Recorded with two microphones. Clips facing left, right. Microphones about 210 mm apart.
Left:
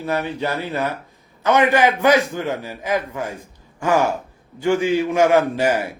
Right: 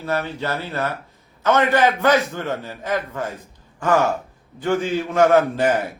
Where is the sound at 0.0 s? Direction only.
15° left (ahead or behind).